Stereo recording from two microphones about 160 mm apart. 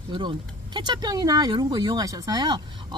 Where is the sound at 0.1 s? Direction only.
30° right (ahead or behind).